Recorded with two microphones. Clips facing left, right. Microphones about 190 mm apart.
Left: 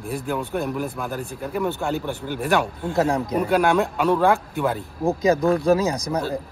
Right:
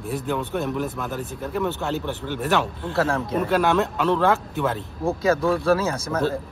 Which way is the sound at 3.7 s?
Centre (ahead or behind).